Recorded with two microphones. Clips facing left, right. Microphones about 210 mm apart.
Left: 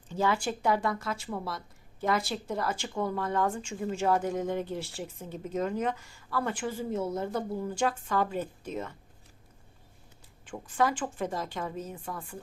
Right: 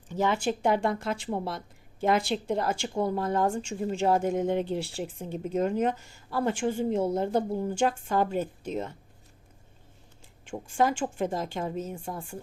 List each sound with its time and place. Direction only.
0.1 s speech: 20° right (ahead or behind)
10.5 s speech: 25° right (ahead or behind)